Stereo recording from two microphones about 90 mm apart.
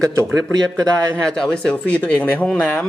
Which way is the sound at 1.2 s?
10° left (ahead or behind).